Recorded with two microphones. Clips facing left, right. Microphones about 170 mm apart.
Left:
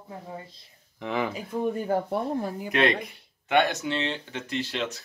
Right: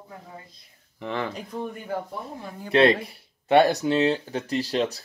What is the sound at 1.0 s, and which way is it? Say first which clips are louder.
Speech: left 1 dB; 5° left (ahead or behind).